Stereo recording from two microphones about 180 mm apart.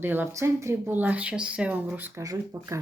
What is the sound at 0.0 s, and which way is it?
Speech, 10° right (ahead or behind).